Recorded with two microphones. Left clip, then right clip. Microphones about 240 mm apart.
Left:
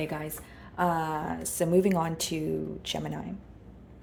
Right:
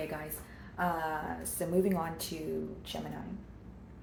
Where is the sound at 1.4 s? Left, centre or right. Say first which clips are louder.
Left 8 dB; left.